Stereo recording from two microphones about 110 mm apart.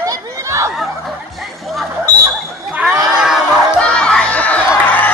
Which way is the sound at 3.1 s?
5° right (ahead or behind).